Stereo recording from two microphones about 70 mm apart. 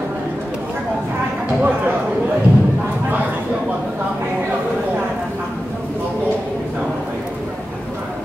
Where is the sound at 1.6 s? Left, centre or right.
Right.